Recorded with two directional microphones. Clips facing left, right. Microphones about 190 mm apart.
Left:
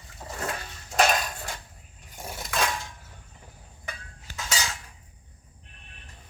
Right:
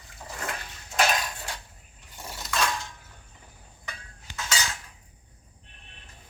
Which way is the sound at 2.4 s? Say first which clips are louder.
Even; 50° left (ahead or behind).